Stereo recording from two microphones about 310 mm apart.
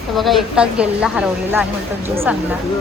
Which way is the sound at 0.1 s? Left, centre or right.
Centre.